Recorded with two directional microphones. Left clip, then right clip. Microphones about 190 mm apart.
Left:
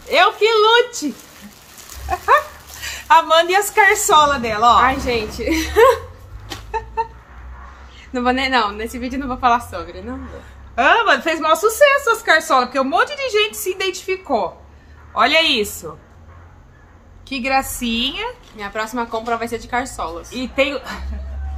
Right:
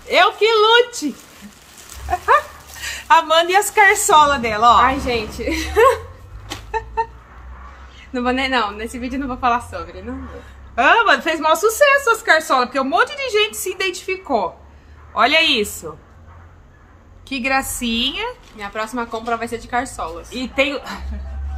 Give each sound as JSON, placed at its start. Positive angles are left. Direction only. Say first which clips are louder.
{"t": 0.1, "sound": "a sound", "louder": "even", "side_deg": -15}
{"t": 2.0, "sound": "speech", "louder": "even", "side_deg": -15}
{"t": 4.7, "sound": "a woman's voice", "louder": "even", "side_deg": 10}
{"t": 6.5, "sound": "chicken", "louder": "right 1 dB", "side_deg": -15}
{"t": 8.1, "sound": "a woman's voice", "louder": "left 2 dB", "side_deg": 15}
{"t": 10.7, "sound": "a woman's voice", "louder": "right 1 dB", "side_deg": -15}
{"t": 17.3, "sound": "a woman's voice", "louder": "left 1 dB", "side_deg": -15}
{"t": 18.6, "sound": "a woman's voice", "louder": "left 1 dB", "side_deg": 15}
{"t": 20.2, "sound": "a woman's voice", "louder": "even", "side_deg": -15}